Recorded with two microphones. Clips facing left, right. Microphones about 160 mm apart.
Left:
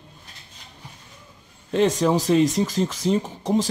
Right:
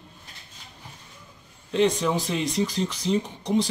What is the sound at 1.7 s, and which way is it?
Speech, 45° left (ahead or behind).